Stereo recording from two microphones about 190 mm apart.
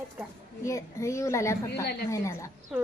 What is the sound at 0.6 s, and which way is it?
A child's voice, 15° left (ahead or behind).